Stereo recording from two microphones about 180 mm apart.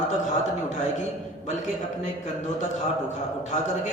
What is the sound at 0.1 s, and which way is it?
Speech, 40° left (ahead or behind).